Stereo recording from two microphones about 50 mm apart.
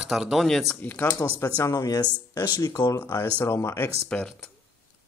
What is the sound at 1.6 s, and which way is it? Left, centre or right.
Speech, left.